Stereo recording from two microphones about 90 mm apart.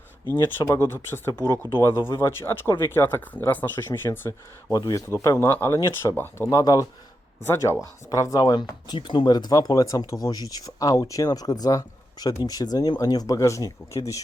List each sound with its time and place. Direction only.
0.3 s speech: 35° left (ahead or behind)
1.3 s speech: 40° left (ahead or behind)
1.8 s speech: 30° left (ahead or behind)
4.9 s speech: 40° left (ahead or behind)
7.4 s speech: 30° left (ahead or behind); by 9.0 s 50° left (ahead or behind)
9.0 s speech: 65° left (ahead or behind); by 14.2 s 35° left (ahead or behind)